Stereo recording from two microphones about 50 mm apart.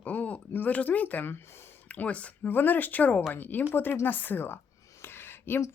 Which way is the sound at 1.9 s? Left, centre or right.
Left.